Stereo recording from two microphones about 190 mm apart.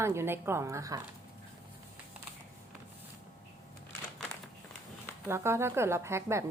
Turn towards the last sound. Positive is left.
turn(degrees=-15)  # may be behind; listen again after turning